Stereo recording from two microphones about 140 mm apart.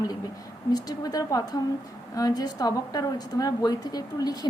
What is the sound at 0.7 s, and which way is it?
A woman's voice, 25° left (ahead or behind).